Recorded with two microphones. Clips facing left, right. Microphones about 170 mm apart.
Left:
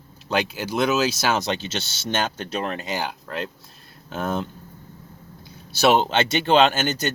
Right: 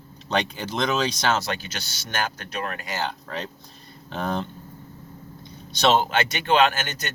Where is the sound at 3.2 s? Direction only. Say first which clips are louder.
Left 2 dB; centre (ahead or behind).